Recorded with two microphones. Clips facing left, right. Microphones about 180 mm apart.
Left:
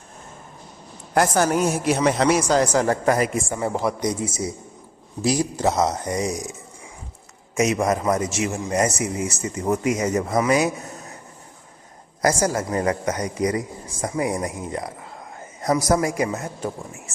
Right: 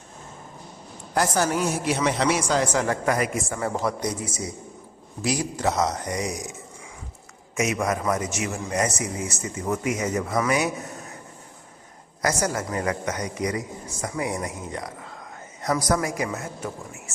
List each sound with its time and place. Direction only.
1.1 s a woman's voice: 50° left (ahead or behind); by 3.4 s 35° left (ahead or behind)
3.5 s speech: 15° left (ahead or behind)
4.2 s a woman's voice: 25° left (ahead or behind)
7.5 s a woman's voice: 35° left (ahead or behind)
12.2 s a woman's voice: 30° left (ahead or behind)